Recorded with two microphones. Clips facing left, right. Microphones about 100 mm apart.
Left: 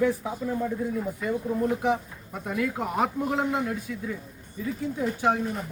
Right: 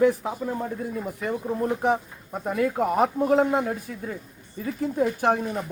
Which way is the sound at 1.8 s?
40° right (ahead or behind).